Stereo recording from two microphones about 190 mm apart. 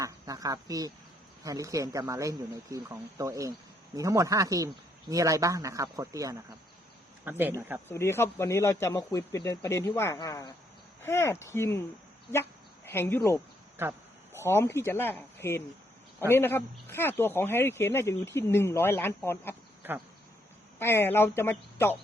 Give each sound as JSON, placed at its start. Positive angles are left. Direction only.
{"t": 0.0, "sound": "speech", "side_deg": -20}
{"t": 7.9, "sound": "speech", "side_deg": 15}
{"t": 13.8, "sound": "speech", "side_deg": -15}
{"t": 14.3, "sound": "speech", "side_deg": 15}
{"t": 20.7, "sound": "speech", "side_deg": 10}